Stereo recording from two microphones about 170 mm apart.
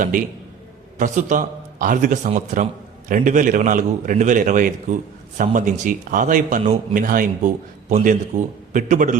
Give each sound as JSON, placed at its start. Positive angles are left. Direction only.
{"t": 0.0, "sound": "speech", "side_deg": -50}